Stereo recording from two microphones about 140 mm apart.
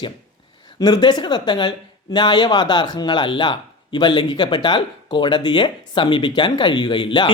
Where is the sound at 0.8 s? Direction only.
30° left (ahead or behind).